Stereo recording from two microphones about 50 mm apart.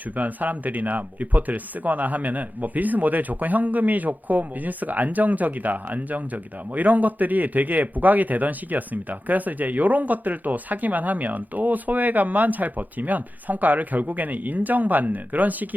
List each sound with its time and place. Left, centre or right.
0.2 s speech: right